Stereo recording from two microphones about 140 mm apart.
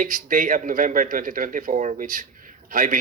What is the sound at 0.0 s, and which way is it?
Speech, 75° right (ahead or behind).